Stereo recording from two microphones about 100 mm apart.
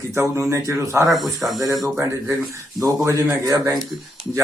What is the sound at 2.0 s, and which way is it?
A man's voice, 30° right (ahead or behind).